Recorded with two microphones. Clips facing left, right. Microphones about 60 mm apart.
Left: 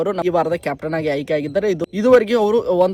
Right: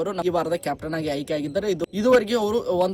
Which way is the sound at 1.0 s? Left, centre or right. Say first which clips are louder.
Left 8 dB; left.